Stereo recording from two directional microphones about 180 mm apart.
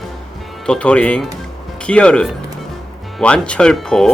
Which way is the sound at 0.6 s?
5° left (ahead or behind).